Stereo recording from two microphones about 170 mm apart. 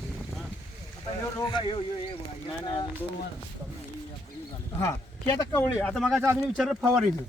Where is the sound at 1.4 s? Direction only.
25° left (ahead or behind).